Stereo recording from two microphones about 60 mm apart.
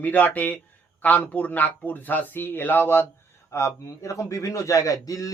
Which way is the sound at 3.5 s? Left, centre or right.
Left.